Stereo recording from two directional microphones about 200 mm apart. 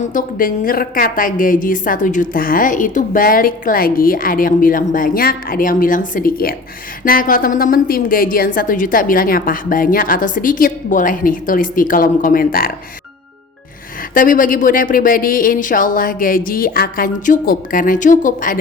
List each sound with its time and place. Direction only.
0.1 s a woman's voice: 40° left (ahead or behind)
14.1 s a woman's voice: 40° left (ahead or behind)